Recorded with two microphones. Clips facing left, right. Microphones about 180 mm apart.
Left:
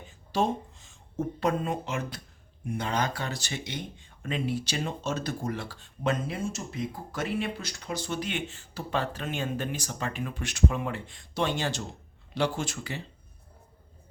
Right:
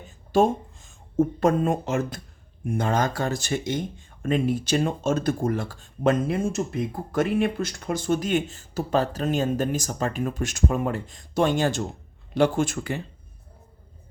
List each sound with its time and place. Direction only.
0.3 s speech: 50° right (ahead or behind)